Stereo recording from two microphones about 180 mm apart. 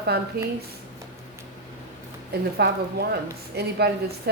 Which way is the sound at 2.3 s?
65° right (ahead or behind).